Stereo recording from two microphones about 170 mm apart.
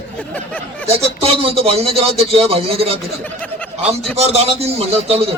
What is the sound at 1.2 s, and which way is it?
A man's voice, 35° right (ahead or behind).